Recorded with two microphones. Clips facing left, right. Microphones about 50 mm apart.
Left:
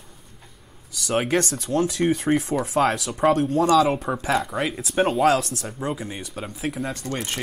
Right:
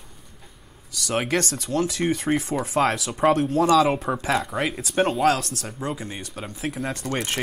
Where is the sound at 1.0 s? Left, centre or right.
Centre.